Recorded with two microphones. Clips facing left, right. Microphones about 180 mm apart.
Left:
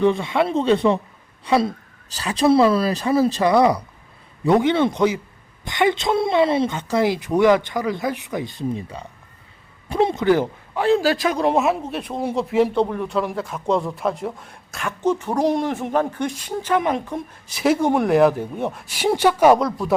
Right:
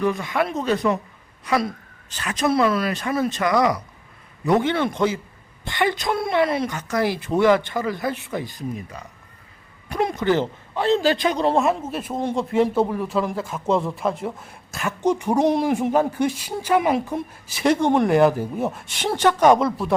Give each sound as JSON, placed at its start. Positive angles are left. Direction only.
{"t": 0.0, "sound": "a woman's voice", "side_deg": 25}
{"t": 4.4, "sound": "speech", "side_deg": 20}
{"t": 10.2, "sound": "a man's voice", "side_deg": 10}
{"t": 15.0, "sound": "speech", "side_deg": -15}
{"t": 19.5, "sound": "speech", "side_deg": 0}